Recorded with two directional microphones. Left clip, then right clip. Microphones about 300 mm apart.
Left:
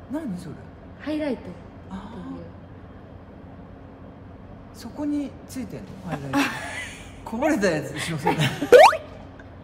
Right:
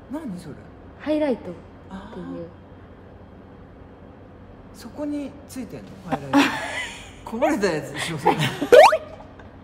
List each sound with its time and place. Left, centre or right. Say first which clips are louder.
0.1 s a man's voice: left 1 dB; centre
1.0 s a man's voice: right 5 dB; right
1.9 s a man's voice: right 2 dB; centre
4.9 s a man's voice: left 1 dB; centre
6.0 s a woman's voice: right 5 dB; right
7.2 s a man's voice: right 1 dB; centre
7.9 s a man's voice: right 4 dB; right
8.4 s speech: even; centre